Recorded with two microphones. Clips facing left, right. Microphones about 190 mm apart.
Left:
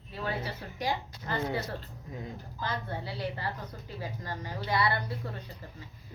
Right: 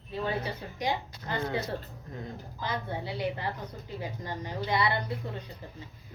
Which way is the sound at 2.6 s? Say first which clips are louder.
Right 2 dB; 15° right (ahead or behind).